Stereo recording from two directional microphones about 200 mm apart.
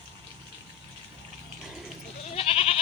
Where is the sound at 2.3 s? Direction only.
30° left (ahead or behind).